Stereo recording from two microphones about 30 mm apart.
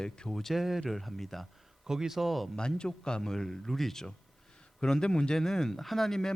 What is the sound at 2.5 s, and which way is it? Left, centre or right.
Speech, left.